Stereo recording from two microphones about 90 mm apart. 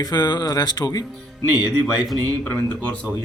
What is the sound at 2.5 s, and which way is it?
Speech, 15° left (ahead or behind).